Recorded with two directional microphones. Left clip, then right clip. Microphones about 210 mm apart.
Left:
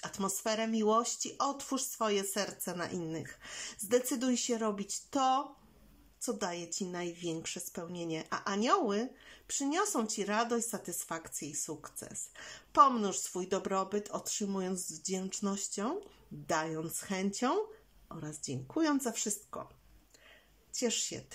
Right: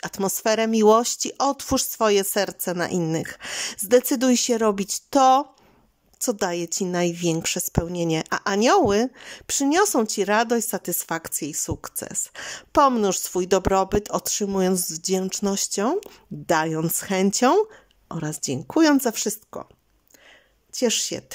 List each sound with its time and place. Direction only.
0.0 s a woman's voice: 45° right (ahead or behind)
20.7 s speech: 40° right (ahead or behind)